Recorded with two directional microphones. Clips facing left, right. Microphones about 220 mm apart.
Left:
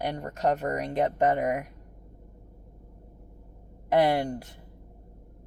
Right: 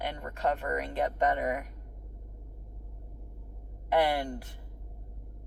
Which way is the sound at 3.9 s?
40° left (ahead or behind).